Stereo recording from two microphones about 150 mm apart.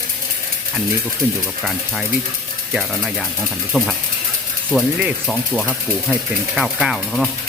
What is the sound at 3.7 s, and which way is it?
Speech, centre (ahead or behind).